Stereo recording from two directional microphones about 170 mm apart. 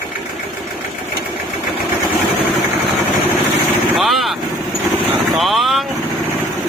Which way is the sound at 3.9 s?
Centre (ahead or behind).